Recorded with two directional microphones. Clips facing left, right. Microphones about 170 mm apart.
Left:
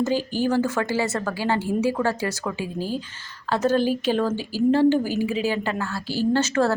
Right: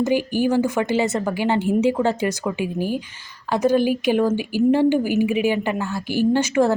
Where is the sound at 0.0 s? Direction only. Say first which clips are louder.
Right 3 dB; 15° right (ahead or behind).